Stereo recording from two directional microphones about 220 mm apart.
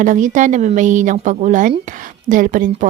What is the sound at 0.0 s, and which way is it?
Speech, 35° right (ahead or behind).